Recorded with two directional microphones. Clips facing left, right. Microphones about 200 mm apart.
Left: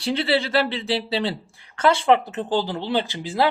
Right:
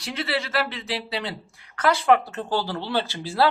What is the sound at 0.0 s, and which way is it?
Speech, 30° left (ahead or behind).